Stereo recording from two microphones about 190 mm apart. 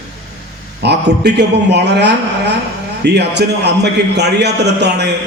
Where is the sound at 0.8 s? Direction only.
60° right (ahead or behind).